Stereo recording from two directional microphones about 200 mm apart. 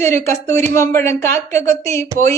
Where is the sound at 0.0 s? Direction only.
10° left (ahead or behind).